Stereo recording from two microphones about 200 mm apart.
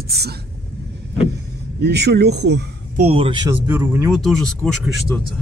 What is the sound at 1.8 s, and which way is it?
Speech, 55° right (ahead or behind).